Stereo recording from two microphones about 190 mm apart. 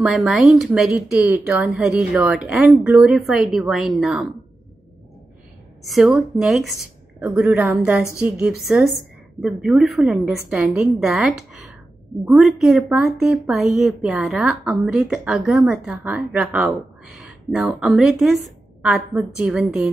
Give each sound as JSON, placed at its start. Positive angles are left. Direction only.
{"t": 0.0, "sound": "speech", "side_deg": 0}
{"t": 6.0, "sound": "speech", "side_deg": -5}